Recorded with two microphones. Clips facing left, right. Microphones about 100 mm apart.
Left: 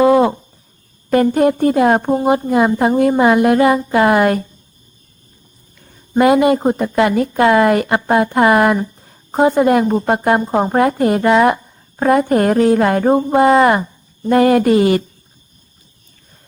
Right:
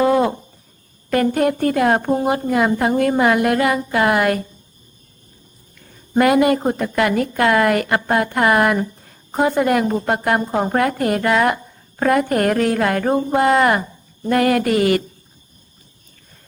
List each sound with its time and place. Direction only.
0.0 s a sound: 20° left (ahead or behind)
1.1 s a woman's voice: 25° left (ahead or behind)
6.1 s a woman's voice: 25° left (ahead or behind)